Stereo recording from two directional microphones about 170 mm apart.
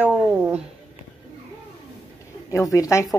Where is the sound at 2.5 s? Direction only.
20° left (ahead or behind).